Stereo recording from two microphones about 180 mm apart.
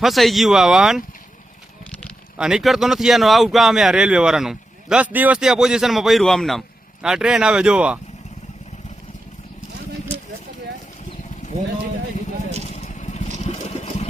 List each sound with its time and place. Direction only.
0.0 s speech: centre (ahead or behind)
2.4 s speech: centre (ahead or behind)
12.6 s vehicle: 40° left (ahead or behind)
13.4 s a sound: 35° left (ahead or behind)